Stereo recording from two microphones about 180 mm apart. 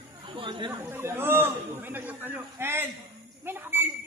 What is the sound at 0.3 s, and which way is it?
Chatter, 25° right (ahead or behind).